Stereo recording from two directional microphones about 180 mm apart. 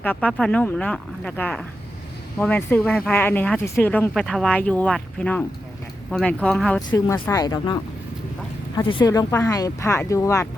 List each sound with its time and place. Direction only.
0.0 s speech: 10° left (ahead or behind)
6.9 s speech: 20° left (ahead or behind)
8.9 s speech: 25° left (ahead or behind)